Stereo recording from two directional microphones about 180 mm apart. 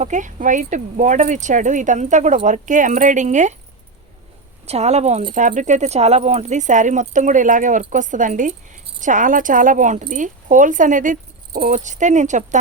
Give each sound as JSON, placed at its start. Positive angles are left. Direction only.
{"t": 0.0, "sound": "speech", "side_deg": -45}
{"t": 4.6, "sound": "speech", "side_deg": -35}